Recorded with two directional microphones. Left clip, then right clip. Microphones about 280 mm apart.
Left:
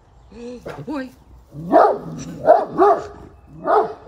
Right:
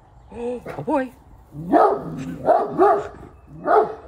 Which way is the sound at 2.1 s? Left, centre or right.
Centre.